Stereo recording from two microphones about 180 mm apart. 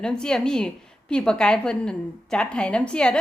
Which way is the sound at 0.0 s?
5° left (ahead or behind).